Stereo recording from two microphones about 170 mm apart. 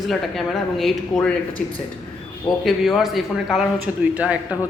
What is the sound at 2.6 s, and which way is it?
Speech, centre (ahead or behind).